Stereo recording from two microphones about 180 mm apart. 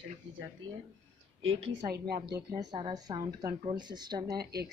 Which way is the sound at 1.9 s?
60° right (ahead or behind).